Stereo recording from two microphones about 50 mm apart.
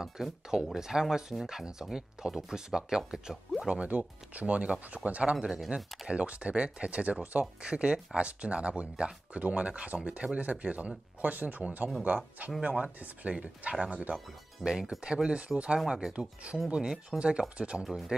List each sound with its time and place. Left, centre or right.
0.0 s speech: centre
3.7 s speech: right
13.3 s speech: right
14.6 s speech: centre
17.2 s speech: right
17.8 s speech: centre